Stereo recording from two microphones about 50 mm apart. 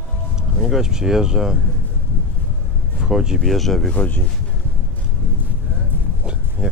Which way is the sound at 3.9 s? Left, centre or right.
Left.